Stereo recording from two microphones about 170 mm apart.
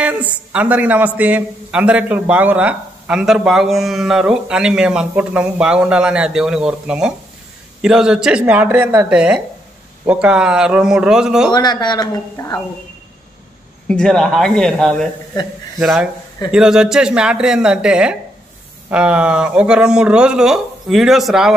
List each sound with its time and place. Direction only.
0.0 s a man's voice: 10° right (ahead or behind)
11.5 s speech: 25° left (ahead or behind)
13.8 s a man's voice: 5° left (ahead or behind)